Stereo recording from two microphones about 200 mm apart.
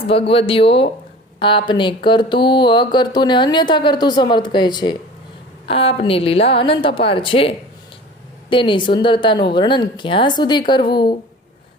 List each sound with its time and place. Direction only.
0.1 s speech: 30° left (ahead or behind)